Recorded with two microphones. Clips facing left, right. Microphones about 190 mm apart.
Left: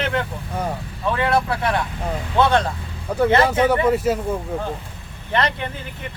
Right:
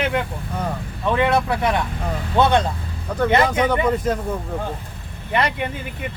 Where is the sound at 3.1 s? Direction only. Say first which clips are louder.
Left 1 dB; 10° left (ahead or behind).